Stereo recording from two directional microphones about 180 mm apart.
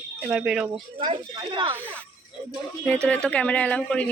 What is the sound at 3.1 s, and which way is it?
Speech, 5° left (ahead or behind).